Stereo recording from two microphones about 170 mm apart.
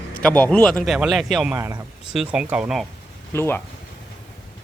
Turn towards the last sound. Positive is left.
turn(degrees=15)  # may be behind; listen again after turning